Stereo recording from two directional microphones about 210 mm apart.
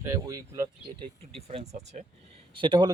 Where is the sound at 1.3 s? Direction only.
30° right (ahead or behind).